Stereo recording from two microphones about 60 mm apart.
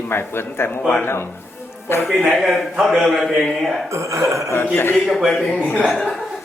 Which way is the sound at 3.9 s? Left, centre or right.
Right.